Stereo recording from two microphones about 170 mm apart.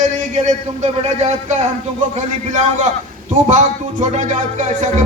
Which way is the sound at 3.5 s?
45° right (ahead or behind).